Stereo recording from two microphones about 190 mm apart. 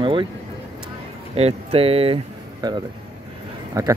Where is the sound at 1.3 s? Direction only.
30° right (ahead or behind).